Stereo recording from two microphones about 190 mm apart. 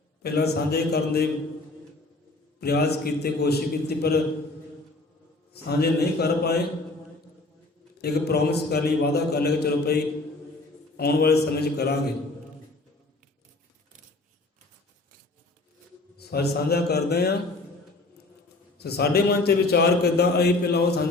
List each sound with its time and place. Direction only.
0.2 s a man's voice: 60° left (ahead or behind)
2.6 s a man's voice: 60° left (ahead or behind)
5.6 s a man's voice: 60° left (ahead or behind)
7.9 s a man's voice: 60° left (ahead or behind)
16.1 s a man's voice: 55° left (ahead or behind)
18.8 s a man's voice: 55° left (ahead or behind)